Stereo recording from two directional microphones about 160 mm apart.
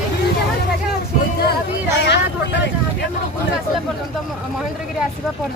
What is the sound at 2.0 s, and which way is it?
Speech, 90° left.